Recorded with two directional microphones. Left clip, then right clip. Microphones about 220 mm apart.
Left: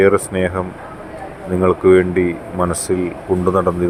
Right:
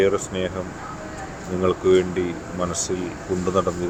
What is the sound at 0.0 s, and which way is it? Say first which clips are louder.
Speech: left 7 dB; 20° left (ahead or behind).